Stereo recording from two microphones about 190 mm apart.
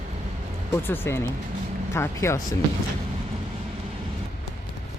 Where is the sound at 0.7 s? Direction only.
10° left (ahead or behind).